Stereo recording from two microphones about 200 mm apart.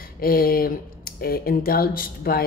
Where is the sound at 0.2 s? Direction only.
45° left (ahead or behind).